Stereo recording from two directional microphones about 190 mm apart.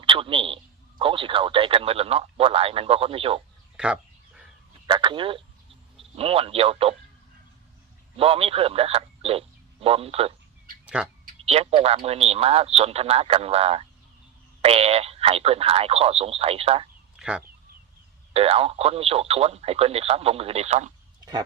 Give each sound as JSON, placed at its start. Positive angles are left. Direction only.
{"t": 0.0, "sound": "speech", "side_deg": -25}
{"t": 3.8, "sound": "a sound", "side_deg": -5}
{"t": 4.9, "sound": "a sound", "side_deg": -25}
{"t": 6.0, "sound": "speech", "side_deg": -30}
{"t": 8.1, "sound": "speech", "side_deg": -30}
{"t": 10.8, "sound": "speech", "side_deg": -5}
{"t": 11.4, "sound": "speech", "side_deg": -30}
{"t": 17.2, "sound": "speech", "side_deg": -5}
{"t": 18.3, "sound": "speech", "side_deg": -30}